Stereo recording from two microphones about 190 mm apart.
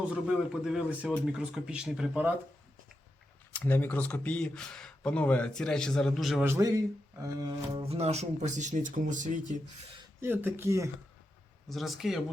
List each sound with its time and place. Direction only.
0.1 s speech: 5° right (ahead or behind)
3.5 s speech: 10° left (ahead or behind)
6.4 s speech: 15° right (ahead or behind)
7.8 s speech: 30° right (ahead or behind)
10.2 s speech: 10° right (ahead or behind)
11.7 s speech: centre (ahead or behind)